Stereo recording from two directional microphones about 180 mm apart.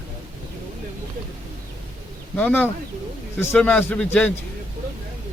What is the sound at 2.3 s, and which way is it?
A man's voice, 10° left (ahead or behind).